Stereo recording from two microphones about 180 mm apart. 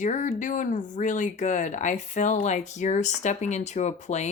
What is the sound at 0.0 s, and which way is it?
Speech, 45° left (ahead or behind).